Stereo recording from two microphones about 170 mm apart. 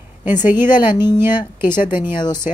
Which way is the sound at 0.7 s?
25° left (ahead or behind).